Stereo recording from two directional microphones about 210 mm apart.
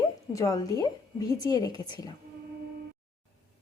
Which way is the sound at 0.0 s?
15° left (ahead or behind).